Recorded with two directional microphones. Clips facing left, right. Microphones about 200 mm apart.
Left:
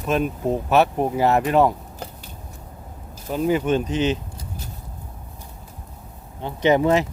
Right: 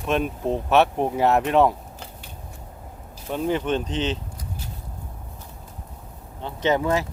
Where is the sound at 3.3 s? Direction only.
5° left (ahead or behind).